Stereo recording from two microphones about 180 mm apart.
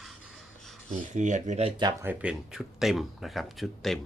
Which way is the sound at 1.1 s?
40° right (ahead or behind).